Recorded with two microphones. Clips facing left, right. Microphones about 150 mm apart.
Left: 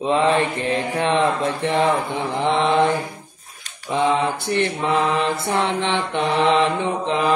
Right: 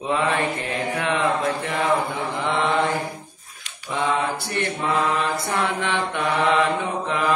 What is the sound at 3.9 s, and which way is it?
Mantra, 20° left (ahead or behind).